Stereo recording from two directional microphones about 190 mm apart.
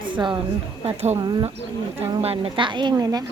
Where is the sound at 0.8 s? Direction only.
35° right (ahead or behind).